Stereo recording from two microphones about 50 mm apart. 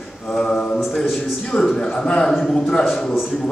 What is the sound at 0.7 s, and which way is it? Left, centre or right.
Speech, centre.